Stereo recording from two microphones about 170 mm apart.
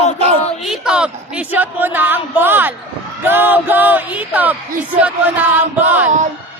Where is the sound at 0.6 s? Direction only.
5° right (ahead or behind).